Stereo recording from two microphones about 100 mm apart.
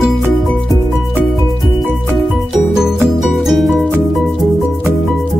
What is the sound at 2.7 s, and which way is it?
Music, 5° right (ahead or behind).